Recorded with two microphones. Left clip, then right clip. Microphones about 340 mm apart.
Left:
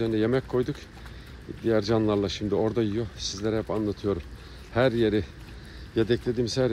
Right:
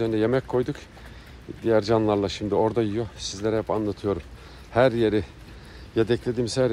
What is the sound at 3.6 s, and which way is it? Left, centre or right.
Speech, right.